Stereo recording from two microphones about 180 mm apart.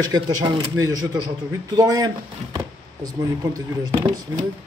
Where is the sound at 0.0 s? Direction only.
20° right (ahead or behind).